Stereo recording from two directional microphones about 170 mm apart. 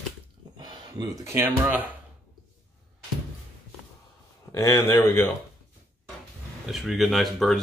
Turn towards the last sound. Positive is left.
turn(degrees=0)  # may be behind; listen again after turning